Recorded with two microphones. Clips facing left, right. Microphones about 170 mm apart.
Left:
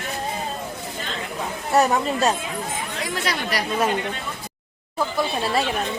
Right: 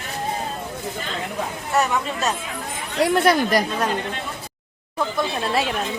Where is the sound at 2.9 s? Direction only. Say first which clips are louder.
Right 12 dB; 65° right (ahead or behind).